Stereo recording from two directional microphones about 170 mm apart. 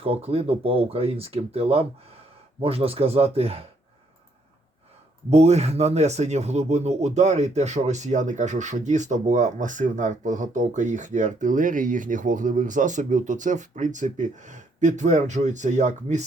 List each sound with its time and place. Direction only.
0.0 s speech: 35° right (ahead or behind)
5.3 s speech: 40° right (ahead or behind)